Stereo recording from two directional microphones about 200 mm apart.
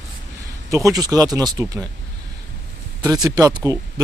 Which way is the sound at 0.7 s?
15° right (ahead or behind).